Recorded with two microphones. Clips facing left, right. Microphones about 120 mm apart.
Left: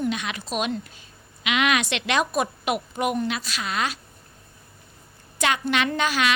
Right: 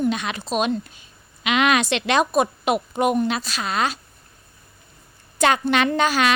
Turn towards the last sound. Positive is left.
turn(degrees=-35)  # may be behind; listen again after turning